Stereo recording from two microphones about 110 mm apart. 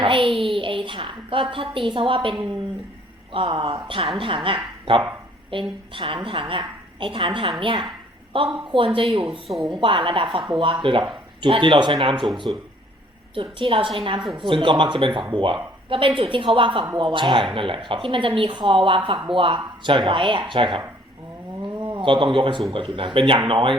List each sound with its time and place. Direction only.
0.0 s speech: 50° right (ahead or behind)
3.3 s speech: 50° right (ahead or behind)
5.5 s a woman's voice: 55° right (ahead or behind)
13.3 s speech: 50° right (ahead or behind)
21.6 s a sound: 45° right (ahead or behind)
22.7 s speech: 50° right (ahead or behind)